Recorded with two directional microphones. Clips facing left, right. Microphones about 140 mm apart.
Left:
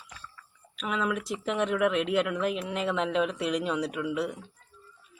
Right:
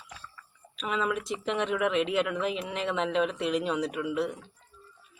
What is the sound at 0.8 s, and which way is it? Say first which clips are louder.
Speech: even; centre (ahead or behind).